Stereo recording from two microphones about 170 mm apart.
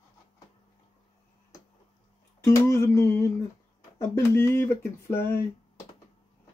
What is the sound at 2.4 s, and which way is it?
Speech, 15° left (ahead or behind).